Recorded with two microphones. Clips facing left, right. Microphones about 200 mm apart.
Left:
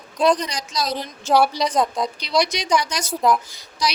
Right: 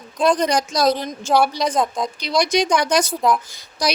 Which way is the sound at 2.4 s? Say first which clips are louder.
Right 2 dB; 50° right (ahead or behind).